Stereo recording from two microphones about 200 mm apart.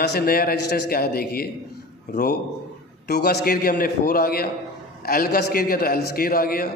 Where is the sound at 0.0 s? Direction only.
50° left (ahead or behind).